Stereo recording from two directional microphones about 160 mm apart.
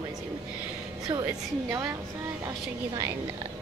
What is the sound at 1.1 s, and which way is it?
Speech, 20° right (ahead or behind).